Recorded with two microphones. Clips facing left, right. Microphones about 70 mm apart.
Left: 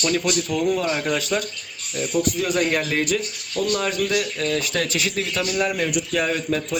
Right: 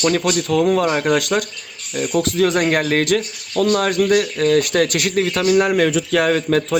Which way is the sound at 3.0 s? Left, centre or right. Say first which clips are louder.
Right 5 dB; right.